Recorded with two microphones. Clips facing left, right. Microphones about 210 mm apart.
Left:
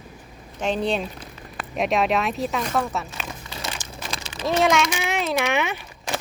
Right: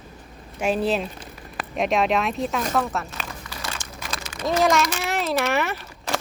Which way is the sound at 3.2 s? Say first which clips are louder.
Left 1 dB; 20° left (ahead or behind).